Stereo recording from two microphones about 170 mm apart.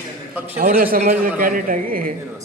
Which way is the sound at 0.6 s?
55° right (ahead or behind).